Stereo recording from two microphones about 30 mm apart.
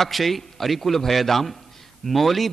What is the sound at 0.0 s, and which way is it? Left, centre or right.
A man's voice, centre.